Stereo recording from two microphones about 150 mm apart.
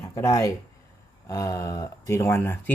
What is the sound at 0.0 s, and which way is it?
Speech, 20° left (ahead or behind).